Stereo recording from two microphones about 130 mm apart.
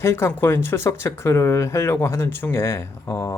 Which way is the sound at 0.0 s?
20° left (ahead or behind).